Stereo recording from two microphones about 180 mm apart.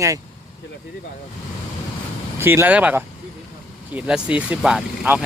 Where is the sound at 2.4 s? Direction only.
10° right (ahead or behind).